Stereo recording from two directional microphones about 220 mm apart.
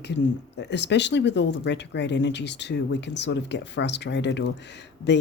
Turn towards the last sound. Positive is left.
turn(degrees=50)  # may be behind; listen again after turning